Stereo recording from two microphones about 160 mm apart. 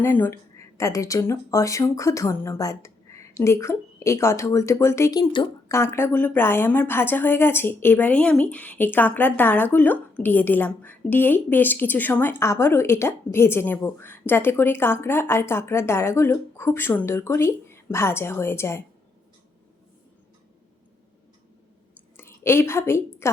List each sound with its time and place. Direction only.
0.0 s a woman's voice: 15° left (ahead or behind)
5.3 s speech: 30° left (ahead or behind)
5.7 s a woman's voice: 15° left (ahead or behind)
21.9 s a sound: 15° left (ahead or behind)